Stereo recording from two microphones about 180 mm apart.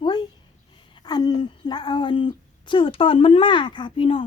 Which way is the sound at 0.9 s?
20° left (ahead or behind).